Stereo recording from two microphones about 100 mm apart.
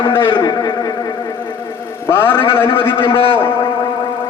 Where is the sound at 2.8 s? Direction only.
55° left (ahead or behind).